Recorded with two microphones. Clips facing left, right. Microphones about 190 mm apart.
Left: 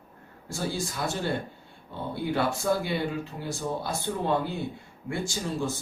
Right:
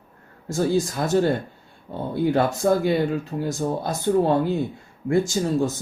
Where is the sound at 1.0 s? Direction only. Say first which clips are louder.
Right 7 dB; 45° right (ahead or behind).